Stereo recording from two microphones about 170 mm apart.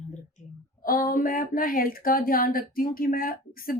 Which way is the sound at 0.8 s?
55° left (ahead or behind).